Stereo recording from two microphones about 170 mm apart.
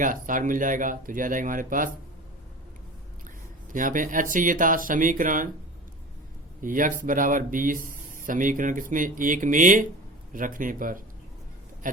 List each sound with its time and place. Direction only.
0.0 s speech: 50° right (ahead or behind)
3.7 s speech: 50° right (ahead or behind)
6.6 s speech: 50° right (ahead or behind)